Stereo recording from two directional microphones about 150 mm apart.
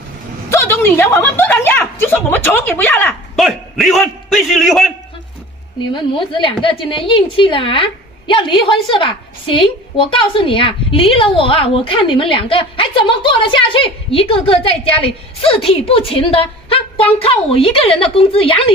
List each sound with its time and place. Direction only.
0.5 s a woman's voice: 15° left (ahead or behind)
3.3 s a man's voice: centre (ahead or behind)
5.8 s a woman's voice: 35° left (ahead or behind)